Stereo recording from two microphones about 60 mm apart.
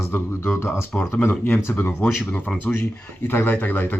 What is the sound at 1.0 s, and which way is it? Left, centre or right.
Speech, left.